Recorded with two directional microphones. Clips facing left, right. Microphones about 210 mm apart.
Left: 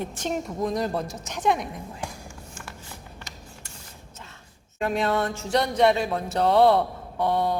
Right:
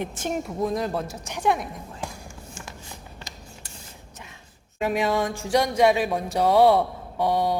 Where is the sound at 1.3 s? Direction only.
5° right (ahead or behind).